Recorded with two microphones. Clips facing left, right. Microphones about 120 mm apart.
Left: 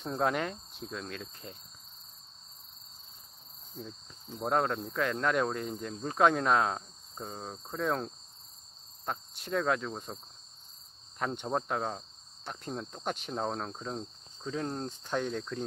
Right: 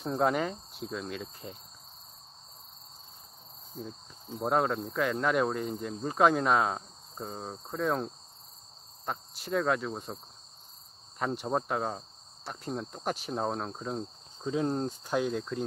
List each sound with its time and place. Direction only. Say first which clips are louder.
0.0 s speech: right 3 dB; centre (ahead or behind)
3.8 s cricket: right 3 dB; 5° right (ahead or behind)
4.4 s speech: right 2 dB; 5° right (ahead or behind)
11.1 s speech: right 2 dB; centre (ahead or behind)